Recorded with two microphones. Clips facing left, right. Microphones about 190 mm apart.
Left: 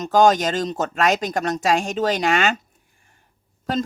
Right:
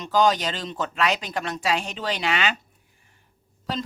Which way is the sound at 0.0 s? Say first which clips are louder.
Left 5 dB; 45° left (ahead or behind).